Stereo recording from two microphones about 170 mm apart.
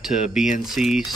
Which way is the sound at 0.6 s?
Centre (ahead or behind).